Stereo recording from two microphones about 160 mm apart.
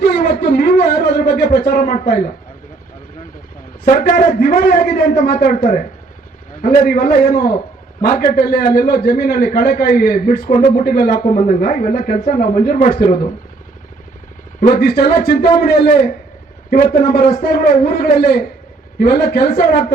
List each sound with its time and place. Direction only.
0.0 s a sound: 70° left (ahead or behind)
3.8 s a man's voice: 60° left (ahead or behind)
14.8 s a man's voice: 75° left (ahead or behind)